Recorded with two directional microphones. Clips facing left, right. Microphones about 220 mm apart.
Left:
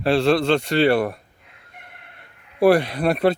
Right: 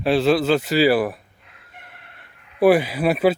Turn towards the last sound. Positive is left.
turn(degrees=-5)  # may be behind; listen again after turning